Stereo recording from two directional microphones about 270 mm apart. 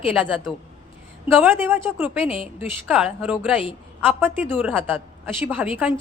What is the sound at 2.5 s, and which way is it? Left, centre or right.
A woman's voice, centre.